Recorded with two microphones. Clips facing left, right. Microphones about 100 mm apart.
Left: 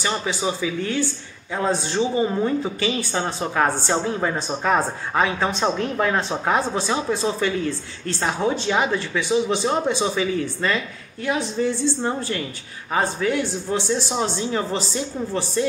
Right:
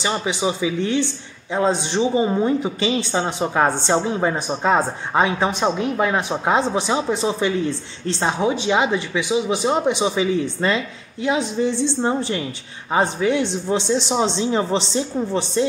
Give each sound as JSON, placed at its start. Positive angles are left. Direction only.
{"t": 0.0, "sound": "speech", "side_deg": -15}